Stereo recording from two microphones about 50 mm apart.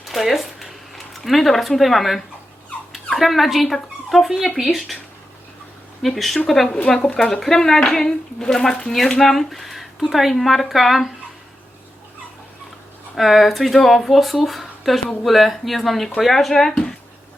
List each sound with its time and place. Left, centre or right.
0.0 s speech: centre
6.0 s speech: centre
7.0 s speech: centre
13.1 s speech: centre